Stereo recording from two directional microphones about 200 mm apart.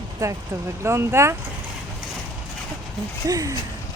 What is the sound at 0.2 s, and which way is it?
Speech, 15° right (ahead or behind).